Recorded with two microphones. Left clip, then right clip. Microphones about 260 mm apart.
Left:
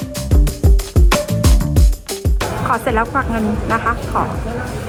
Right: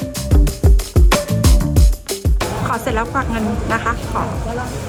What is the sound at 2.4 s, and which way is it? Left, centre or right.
Speech, centre.